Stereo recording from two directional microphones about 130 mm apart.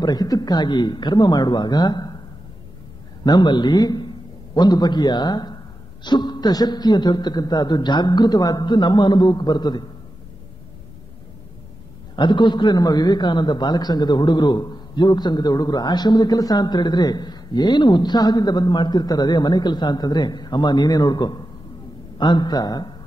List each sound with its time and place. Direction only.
0.0 s a man's voice: 30° left (ahead or behind)
3.3 s a man's voice: 35° left (ahead or behind)
12.2 s a man's voice: 35° left (ahead or behind)